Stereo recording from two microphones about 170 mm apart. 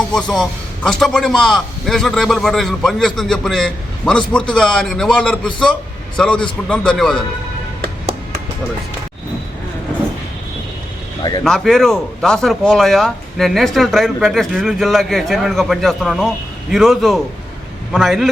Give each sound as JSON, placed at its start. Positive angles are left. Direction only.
{"t": 0.1, "sound": "speech", "side_deg": 5}
{"t": 11.2, "sound": "speech", "side_deg": 25}
{"t": 11.4, "sound": "speech", "side_deg": 0}